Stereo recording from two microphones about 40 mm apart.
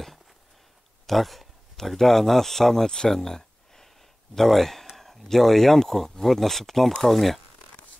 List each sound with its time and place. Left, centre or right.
1.0 s speech: centre
3.1 s a sound: centre
4.4 s speech: centre